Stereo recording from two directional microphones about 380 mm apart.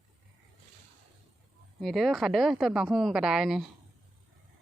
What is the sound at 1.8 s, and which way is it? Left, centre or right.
Speech, centre.